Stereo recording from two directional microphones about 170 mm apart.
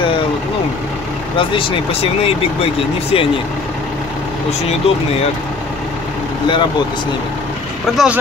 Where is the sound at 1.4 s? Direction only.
30° left (ahead or behind).